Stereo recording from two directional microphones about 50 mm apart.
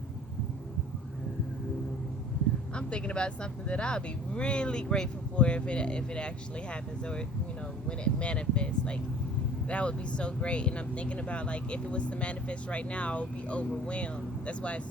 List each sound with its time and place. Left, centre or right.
2.7 s speech: left